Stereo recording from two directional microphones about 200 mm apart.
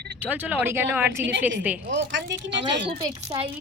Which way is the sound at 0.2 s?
10° right (ahead or behind).